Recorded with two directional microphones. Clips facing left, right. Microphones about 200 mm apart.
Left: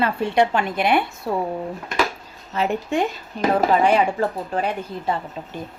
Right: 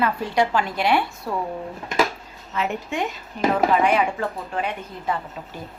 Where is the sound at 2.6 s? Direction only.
35° left (ahead or behind).